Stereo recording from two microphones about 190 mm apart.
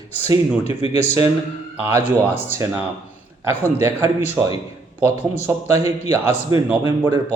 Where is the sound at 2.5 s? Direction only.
15° right (ahead or behind).